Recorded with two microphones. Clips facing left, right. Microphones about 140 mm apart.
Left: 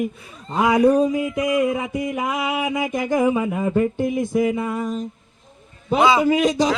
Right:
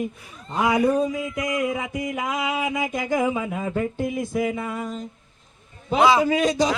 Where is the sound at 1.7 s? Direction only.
30° left (ahead or behind).